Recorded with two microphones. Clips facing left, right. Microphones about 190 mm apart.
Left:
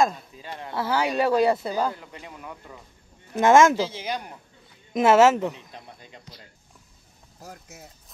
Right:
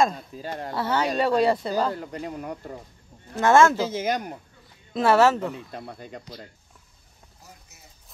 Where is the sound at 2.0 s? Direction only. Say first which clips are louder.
Right 9 dB; 45° right (ahead or behind).